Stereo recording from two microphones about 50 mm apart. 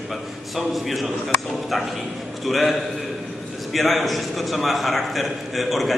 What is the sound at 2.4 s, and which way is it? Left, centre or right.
A man's voice, centre.